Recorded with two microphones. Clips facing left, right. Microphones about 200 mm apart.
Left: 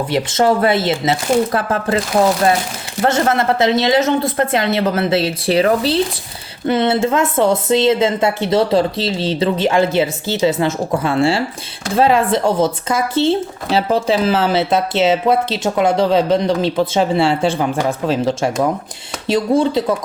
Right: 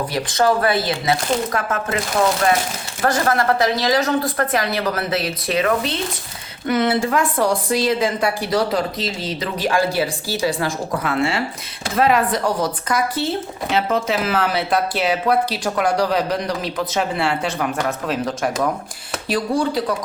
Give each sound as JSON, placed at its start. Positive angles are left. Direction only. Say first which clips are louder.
{"t": 0.1, "sound": "speech", "louder": "left 4 dB", "side_deg": 25}
{"t": 3.0, "sound": "speech", "louder": "left 3 dB", "side_deg": 25}